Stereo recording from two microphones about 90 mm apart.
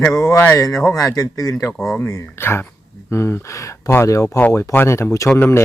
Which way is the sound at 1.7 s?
5° left (ahead or behind).